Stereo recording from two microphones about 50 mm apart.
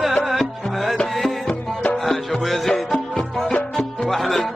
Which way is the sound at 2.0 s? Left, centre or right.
Centre.